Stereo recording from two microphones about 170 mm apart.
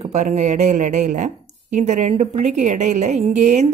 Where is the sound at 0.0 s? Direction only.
40° right (ahead or behind).